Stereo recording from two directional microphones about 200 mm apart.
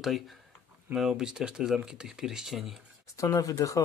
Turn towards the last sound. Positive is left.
turn(degrees=15)  # may be behind; listen again after turning